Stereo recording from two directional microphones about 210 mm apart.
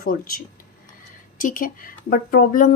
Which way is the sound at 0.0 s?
40° left (ahead or behind).